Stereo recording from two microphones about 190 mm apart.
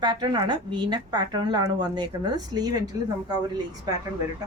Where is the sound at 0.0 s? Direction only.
20° right (ahead or behind).